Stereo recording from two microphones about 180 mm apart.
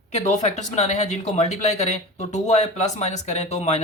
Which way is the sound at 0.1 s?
40° left (ahead or behind).